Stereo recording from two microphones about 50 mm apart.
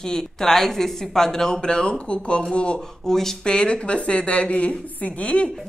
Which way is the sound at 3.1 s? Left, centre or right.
Centre.